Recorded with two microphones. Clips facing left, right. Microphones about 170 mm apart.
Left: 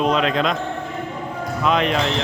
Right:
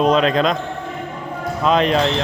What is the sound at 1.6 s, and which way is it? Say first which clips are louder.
Speech: right 3 dB; 35° right (ahead or behind).